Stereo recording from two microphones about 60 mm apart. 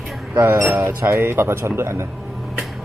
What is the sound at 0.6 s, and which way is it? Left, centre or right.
Music, centre.